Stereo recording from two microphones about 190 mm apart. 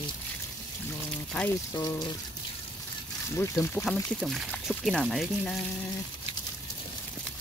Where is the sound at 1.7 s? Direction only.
20° left (ahead or behind).